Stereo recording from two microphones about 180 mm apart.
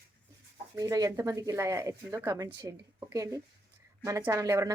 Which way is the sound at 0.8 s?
20° right (ahead or behind).